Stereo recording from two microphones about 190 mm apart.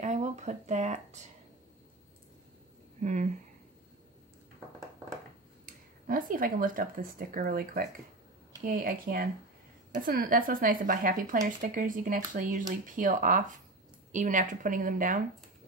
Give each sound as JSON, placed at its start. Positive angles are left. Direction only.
{"t": 0.0, "sound": "a sound", "side_deg": -40}
{"t": 3.0, "sound": "speech", "side_deg": -40}
{"t": 5.7, "sound": "speech", "side_deg": -45}